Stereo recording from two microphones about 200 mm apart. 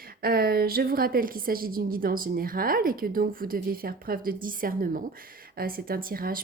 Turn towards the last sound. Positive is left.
turn(degrees=-45)  # may be behind; listen again after turning